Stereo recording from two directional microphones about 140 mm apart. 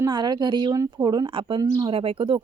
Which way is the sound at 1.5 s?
25° right (ahead or behind).